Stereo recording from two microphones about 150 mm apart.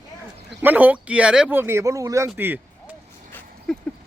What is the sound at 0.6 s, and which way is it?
Speech, 10° right (ahead or behind).